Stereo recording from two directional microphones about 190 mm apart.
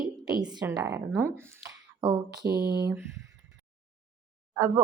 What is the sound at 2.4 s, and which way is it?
Mantra, 55° right (ahead or behind).